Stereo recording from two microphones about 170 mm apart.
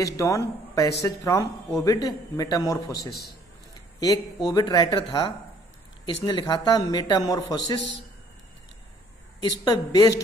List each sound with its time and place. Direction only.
0.0 s speech: 20° left (ahead or behind)
6.2 s speech: 25° left (ahead or behind)
9.4 s speech: 25° left (ahead or behind)